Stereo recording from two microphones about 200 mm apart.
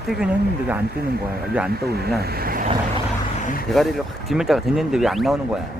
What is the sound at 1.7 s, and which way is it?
Speech, 50° right (ahead or behind).